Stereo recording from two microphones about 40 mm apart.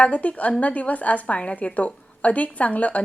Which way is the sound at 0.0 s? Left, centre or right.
Left.